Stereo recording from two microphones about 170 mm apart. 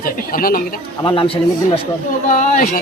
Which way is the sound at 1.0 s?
30° left (ahead or behind).